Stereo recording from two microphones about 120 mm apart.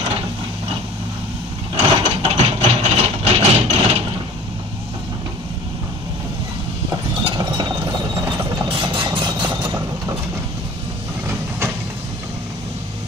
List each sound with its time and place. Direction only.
1.8 s mechanisms: 55° right (ahead or behind)
7.2 s mechanisms: 40° right (ahead or behind)
7.8 s mechanisms: 30° right (ahead or behind)
8.6 s vehicle: 40° right (ahead or behind)
9.7 s vehicle: 25° right (ahead or behind)